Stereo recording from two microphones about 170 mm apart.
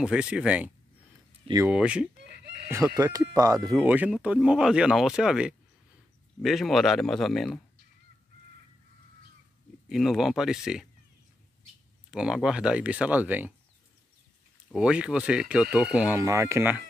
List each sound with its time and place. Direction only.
0.0 s speech: 5° right (ahead or behind)
1.7 s speech: 5° right (ahead or behind)
2.1 s chicken: 75° right (ahead or behind)
3.0 s speech: 20° right (ahead or behind)
3.7 s speech: 10° right (ahead or behind)
9.8 s speech: centre (ahead or behind)
12.1 s speech: 5° right (ahead or behind)
14.7 s speech: 5° right (ahead or behind)
16.2 s speech: 20° right (ahead or behind)